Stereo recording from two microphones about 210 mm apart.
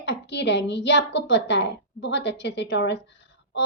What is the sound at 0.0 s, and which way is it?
Speech, 55° left (ahead or behind).